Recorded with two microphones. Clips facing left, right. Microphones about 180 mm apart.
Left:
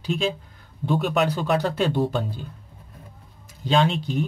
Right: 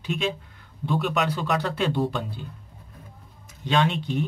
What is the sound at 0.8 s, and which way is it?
Speech, 45° left (ahead or behind).